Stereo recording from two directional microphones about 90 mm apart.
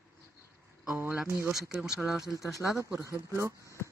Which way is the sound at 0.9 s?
20° right (ahead or behind).